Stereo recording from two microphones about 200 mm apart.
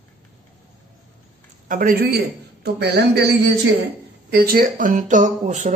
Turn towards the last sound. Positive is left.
turn(degrees=-40)  # may be behind; listen again after turning